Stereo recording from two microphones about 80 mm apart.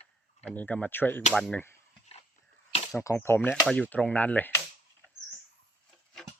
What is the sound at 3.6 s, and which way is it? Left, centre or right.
Speech, centre.